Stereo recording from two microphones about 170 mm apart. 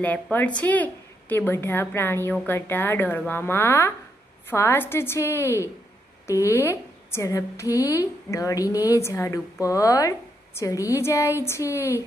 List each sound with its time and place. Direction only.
0.0 s a woman's voice: 10° left (ahead or behind)